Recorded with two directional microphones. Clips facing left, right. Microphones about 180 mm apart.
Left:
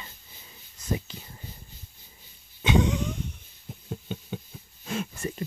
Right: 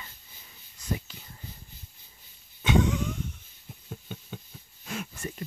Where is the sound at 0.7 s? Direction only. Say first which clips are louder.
Left 3 dB; 20° left (ahead or behind).